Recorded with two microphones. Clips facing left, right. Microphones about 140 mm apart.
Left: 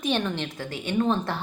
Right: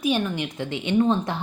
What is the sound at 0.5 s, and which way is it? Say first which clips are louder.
Speech: right 7 dB; 20° right (ahead or behind).